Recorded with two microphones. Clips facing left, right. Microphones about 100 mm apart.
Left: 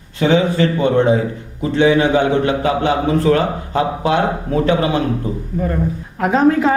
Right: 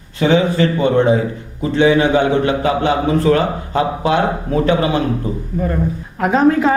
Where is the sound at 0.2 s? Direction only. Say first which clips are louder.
Even; 25° right (ahead or behind).